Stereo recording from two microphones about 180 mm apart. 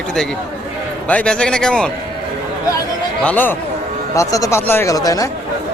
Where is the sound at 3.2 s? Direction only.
10° left (ahead or behind).